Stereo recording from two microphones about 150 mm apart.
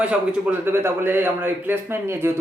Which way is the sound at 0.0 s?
10° right (ahead or behind).